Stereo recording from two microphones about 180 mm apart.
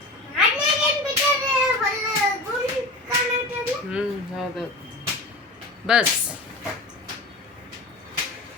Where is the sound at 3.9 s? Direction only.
5° right (ahead or behind).